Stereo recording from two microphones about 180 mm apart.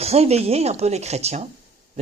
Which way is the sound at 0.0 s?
35° right (ahead or behind).